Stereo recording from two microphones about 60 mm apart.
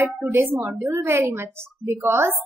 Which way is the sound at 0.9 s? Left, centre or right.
Right.